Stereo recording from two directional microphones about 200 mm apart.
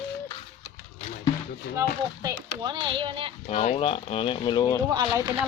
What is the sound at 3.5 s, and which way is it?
Speech, 30° left (ahead or behind).